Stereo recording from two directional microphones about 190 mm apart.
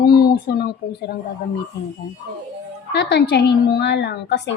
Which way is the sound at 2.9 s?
65° left (ahead or behind).